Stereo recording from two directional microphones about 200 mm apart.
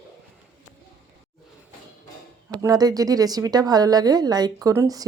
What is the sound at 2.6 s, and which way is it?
Speech, 20° right (ahead or behind).